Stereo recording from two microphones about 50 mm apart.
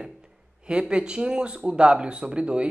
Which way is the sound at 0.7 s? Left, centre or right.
Centre.